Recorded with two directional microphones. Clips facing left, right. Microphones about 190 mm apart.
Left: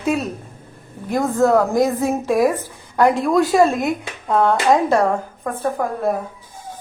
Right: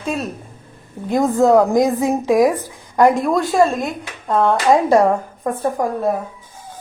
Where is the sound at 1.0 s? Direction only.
20° right (ahead or behind); by 4.5 s centre (ahead or behind).